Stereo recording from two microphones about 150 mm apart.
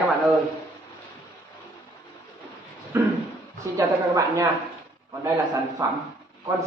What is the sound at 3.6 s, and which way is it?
A woman's voice, 20° right (ahead or behind).